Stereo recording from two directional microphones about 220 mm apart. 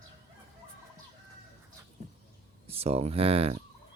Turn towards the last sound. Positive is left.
turn(degrees=-25)  # may be behind; listen again after turning